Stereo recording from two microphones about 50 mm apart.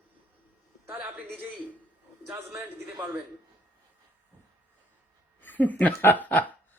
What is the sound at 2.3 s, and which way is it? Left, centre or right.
Speech, right.